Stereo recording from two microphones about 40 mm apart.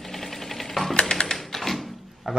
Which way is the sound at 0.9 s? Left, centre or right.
Centre.